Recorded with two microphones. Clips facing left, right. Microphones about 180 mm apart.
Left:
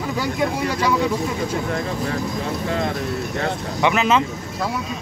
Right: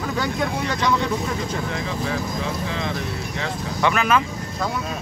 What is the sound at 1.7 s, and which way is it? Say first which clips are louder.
Speech: left 2 dB; 50° left (ahead or behind).